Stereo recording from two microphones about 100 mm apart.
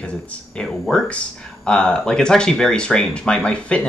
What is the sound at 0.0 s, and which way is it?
Speech, 10° left (ahead or behind).